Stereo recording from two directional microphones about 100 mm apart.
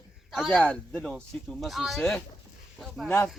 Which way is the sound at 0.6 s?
10° left (ahead or behind).